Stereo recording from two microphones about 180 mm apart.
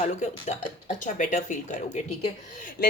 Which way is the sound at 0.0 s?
40° left (ahead or behind).